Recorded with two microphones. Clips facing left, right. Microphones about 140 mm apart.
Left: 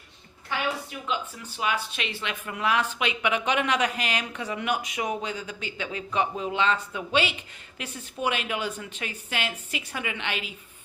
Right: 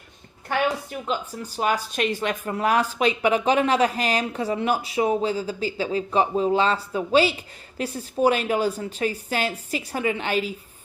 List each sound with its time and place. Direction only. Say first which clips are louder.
0.4 s a woman's voice: right 6 dB; 45° right (ahead or behind)